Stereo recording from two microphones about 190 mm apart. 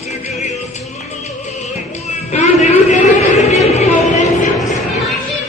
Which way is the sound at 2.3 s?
35° left (ahead or behind).